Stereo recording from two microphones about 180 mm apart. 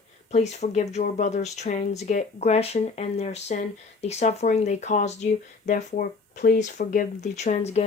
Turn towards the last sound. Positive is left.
turn(degrees=35)  # may be behind; listen again after turning